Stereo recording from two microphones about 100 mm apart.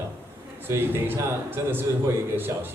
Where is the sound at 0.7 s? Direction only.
25° right (ahead or behind).